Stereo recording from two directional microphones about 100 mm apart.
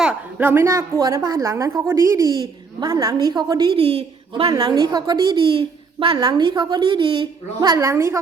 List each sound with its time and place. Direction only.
0.3 s a woman's voice: 20° right (ahead or behind); by 3.8 s 45° right (ahead or behind)
3.8 s speech: 80° right
4.4 s a woman's voice: 40° right (ahead or behind); by 6.1 s 65° right (ahead or behind)
6.1 s a woman's voice: 50° right (ahead or behind); by 8.2 s 30° right (ahead or behind)